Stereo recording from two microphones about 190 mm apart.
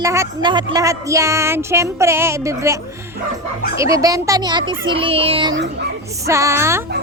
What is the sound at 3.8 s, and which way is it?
A child's voice, 15° right (ahead or behind).